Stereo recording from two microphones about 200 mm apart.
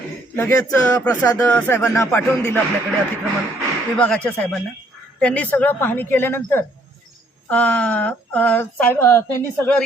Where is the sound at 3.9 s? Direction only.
5° left (ahead or behind).